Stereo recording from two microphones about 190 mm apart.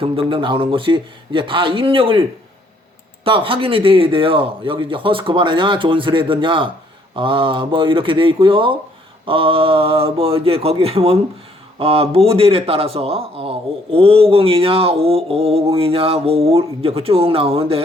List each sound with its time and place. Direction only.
0.0 s speech: 30° right (ahead or behind)
3.2 s a man's voice: 30° right (ahead or behind)